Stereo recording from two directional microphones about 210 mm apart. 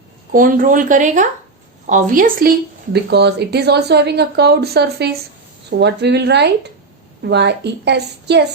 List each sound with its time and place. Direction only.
0.3 s speech: 40° right (ahead or behind)
2.9 s speech: 50° right (ahead or behind)